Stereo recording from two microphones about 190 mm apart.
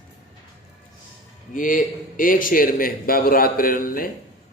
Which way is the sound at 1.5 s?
45° left (ahead or behind).